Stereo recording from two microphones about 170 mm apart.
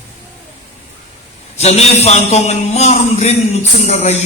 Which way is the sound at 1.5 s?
40° left (ahead or behind).